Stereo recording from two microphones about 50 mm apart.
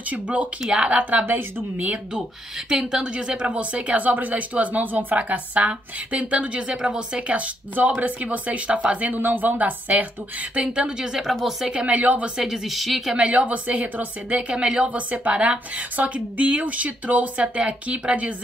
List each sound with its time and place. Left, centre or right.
0.1 s a woman's voice: right
2.7 s a woman's voice: centre; by 10.0 s right
10.5 s speech: right
11.7 s speech: right
12.4 s speech: centre
13.1 s speech: right
14.5 s speech: centre